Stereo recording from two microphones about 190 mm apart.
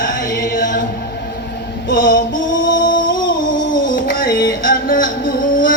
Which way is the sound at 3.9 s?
50° left (ahead or behind).